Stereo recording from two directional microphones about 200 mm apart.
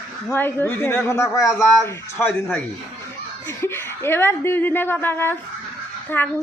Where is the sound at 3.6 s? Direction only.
10° left (ahead or behind).